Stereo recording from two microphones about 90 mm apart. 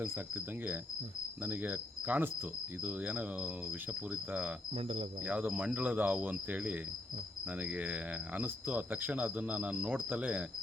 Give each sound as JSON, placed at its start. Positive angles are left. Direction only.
{"t": 1.5, "sound": "cricket", "side_deg": -20}
{"t": 2.8, "sound": "speech", "side_deg": -15}